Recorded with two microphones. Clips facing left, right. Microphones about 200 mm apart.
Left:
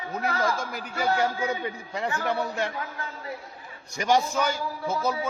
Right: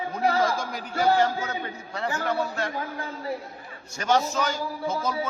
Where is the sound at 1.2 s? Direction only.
10° left (ahead or behind).